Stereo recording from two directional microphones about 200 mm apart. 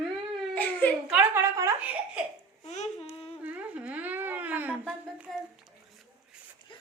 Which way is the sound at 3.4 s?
5° right (ahead or behind).